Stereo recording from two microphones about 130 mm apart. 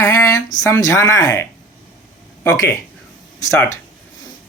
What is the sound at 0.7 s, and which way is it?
Speech, 25° left (ahead or behind).